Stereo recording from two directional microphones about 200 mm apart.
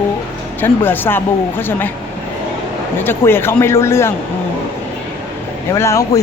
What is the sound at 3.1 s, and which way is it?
Speech, 10° left (ahead or behind).